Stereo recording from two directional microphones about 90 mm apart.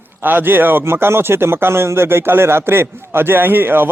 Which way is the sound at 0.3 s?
20° right (ahead or behind).